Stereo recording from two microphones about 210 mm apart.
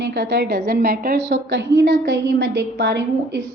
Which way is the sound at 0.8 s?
45° right (ahead or behind).